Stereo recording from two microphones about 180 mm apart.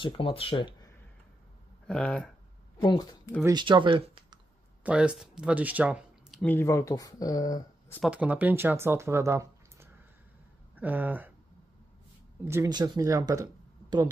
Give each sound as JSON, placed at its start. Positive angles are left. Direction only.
{"t": 0.0, "sound": "speech", "side_deg": 30}
{"t": 1.9, "sound": "speech", "side_deg": 5}
{"t": 2.8, "sound": "speech", "side_deg": 20}
{"t": 3.4, "sound": "speech", "side_deg": -25}
{"t": 4.8, "sound": "speech", "side_deg": -5}
{"t": 6.4, "sound": "speech", "side_deg": 10}
{"t": 8.0, "sound": "speech", "side_deg": -5}
{"t": 12.4, "sound": "speech", "side_deg": -20}